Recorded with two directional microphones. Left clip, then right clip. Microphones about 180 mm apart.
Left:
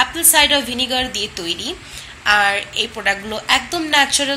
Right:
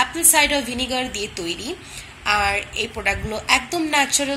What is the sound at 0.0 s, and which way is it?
A woman's voice, 10° right (ahead or behind).